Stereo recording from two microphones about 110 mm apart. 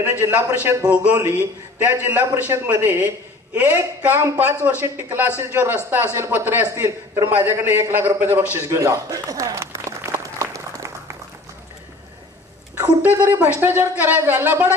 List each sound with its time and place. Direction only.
0.1 s a man's voice: 20° right (ahead or behind)
0.8 s a man's voice: 10° right (ahead or behind); by 10.9 s 30° right (ahead or behind)
13.0 s speech: 15° right (ahead or behind)